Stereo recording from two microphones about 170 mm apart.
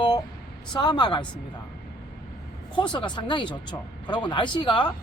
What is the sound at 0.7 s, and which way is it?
Speech, 25° left (ahead or behind).